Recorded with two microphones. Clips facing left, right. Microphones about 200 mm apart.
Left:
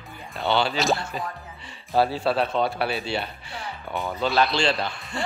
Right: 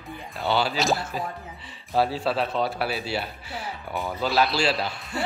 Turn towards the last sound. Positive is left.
turn(degrees=-5)  # may be behind; listen again after turning